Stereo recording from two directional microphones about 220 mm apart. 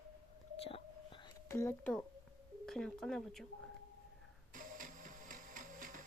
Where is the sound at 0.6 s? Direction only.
25° left (ahead or behind).